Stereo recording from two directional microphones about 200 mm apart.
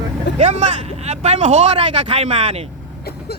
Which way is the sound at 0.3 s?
35° right (ahead or behind).